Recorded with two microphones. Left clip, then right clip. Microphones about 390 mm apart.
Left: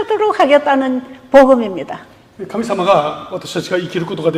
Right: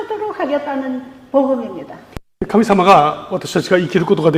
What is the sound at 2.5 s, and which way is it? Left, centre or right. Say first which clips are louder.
A man's voice: right 3 dB; right.